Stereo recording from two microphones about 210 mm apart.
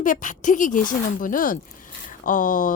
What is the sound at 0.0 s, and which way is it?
Speech, 40° left (ahead or behind).